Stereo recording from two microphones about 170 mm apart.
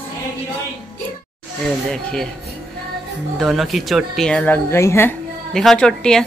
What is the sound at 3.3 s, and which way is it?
Speech, centre (ahead or behind).